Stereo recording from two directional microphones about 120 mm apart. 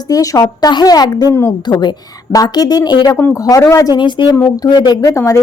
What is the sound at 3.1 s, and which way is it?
Speech, 20° left (ahead or behind).